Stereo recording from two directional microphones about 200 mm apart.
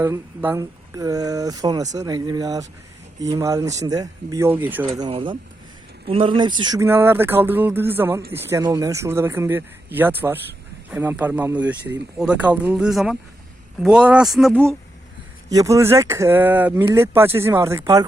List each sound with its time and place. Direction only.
0.0 s speech: 10° right (ahead or behind)
4.9 s speech: 25° right (ahead or behind); by 14.7 s centre (ahead or behind)
15.4 s speech: 15° right (ahead or behind)